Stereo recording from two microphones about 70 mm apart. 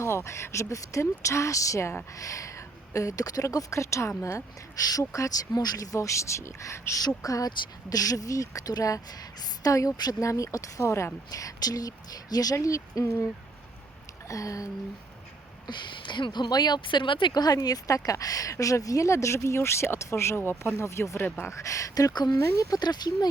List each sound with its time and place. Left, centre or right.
0.0 s speech: left
7.2 s speech: left
11.3 s speech: left
12.5 s speech: left
14.3 s speech: left
15.6 s speech: left
17.3 s speech: left
20.7 s speech: left
21.2 s speech: left
21.5 s speech: left